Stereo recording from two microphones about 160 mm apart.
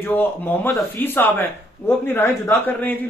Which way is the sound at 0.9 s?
10° left (ahead or behind).